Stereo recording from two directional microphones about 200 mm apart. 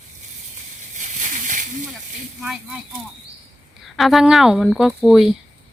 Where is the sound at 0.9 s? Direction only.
35° right (ahead or behind).